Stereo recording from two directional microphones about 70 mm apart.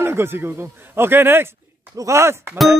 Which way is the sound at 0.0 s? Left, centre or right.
Right.